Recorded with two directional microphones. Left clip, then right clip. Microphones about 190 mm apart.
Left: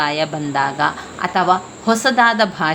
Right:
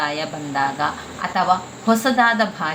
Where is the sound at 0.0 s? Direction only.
40° left (ahead or behind).